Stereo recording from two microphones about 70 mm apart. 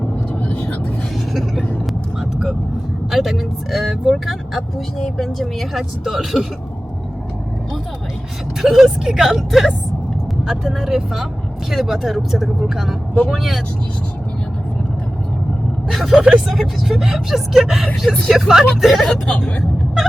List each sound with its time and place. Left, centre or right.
0.3 s vehicle: left
1.3 s vehicle: centre
3.1 s speech: centre
8.6 s speech: centre
15.9 s speech: centre
19.3 s speech: centre